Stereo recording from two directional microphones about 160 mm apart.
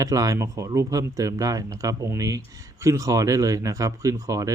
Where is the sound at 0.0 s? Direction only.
20° right (ahead or behind).